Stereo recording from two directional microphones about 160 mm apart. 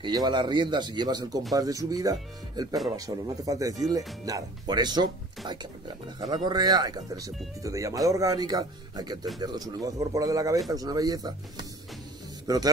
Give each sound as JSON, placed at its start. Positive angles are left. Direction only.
{"t": 0.0, "sound": "a man's voice", "side_deg": -25}
{"t": 6.1, "sound": "a man's voice", "side_deg": -25}